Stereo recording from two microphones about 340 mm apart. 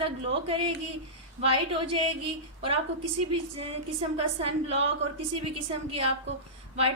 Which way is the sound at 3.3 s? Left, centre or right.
Centre.